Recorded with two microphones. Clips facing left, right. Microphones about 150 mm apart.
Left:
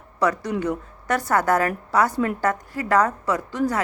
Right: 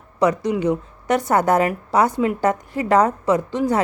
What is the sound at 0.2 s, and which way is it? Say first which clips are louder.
A woman's voice: right 4 dB; 20° right (ahead or behind).